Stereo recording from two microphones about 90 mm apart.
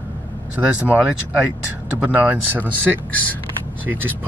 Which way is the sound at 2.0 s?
15° right (ahead or behind).